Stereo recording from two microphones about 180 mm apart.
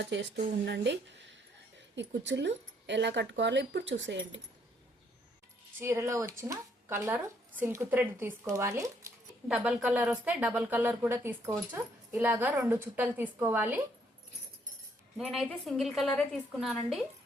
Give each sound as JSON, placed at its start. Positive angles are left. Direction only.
{"t": 0.1, "sound": "speech", "side_deg": -80}
{"t": 5.8, "sound": "speech", "side_deg": -15}
{"t": 15.2, "sound": "a woman's voice", "side_deg": 0}